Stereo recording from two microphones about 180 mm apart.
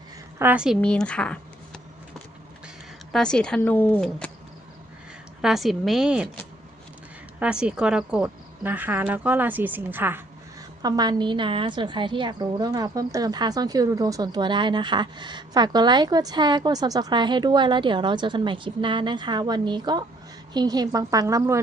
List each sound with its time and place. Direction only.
0.3 s speech: 10° right (ahead or behind)
3.1 s speech: 5° left (ahead or behind)
5.4 s speech: centre (ahead or behind)
7.3 s speech: 5° right (ahead or behind)
10.8 s a woman's voice: 25° right (ahead or behind)